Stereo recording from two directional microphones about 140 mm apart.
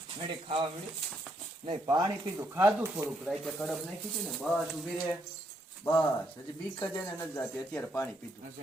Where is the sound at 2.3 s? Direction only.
20° right (ahead or behind).